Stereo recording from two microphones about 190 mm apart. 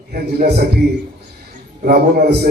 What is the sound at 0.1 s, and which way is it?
Speech, 55° right (ahead or behind).